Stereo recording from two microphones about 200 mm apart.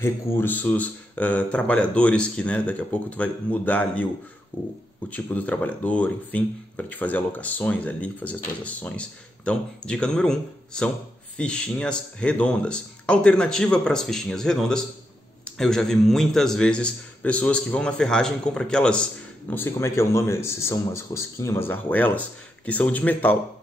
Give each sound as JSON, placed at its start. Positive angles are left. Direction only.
{"t": 0.0, "sound": "a man's voice", "side_deg": 10}